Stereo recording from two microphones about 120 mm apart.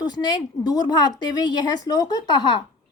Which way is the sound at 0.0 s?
35° left (ahead or behind).